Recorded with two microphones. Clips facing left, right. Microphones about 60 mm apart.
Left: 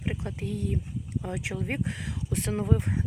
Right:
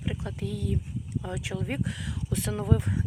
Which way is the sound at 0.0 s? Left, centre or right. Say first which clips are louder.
Even; left.